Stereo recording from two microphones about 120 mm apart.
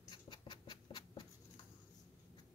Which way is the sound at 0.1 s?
40° left (ahead or behind).